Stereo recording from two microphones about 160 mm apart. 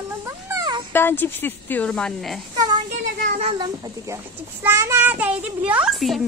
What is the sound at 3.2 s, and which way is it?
Speech, 55° right (ahead or behind).